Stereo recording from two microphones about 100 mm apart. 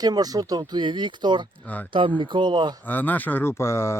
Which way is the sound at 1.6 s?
15° left (ahead or behind).